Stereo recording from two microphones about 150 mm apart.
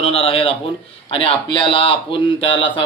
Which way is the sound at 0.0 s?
40° left (ahead or behind).